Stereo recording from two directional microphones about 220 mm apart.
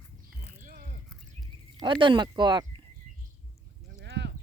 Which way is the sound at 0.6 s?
40° right (ahead or behind).